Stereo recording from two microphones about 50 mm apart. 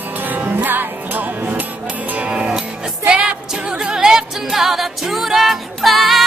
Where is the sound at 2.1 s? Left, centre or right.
Right; by 6.2 s centre.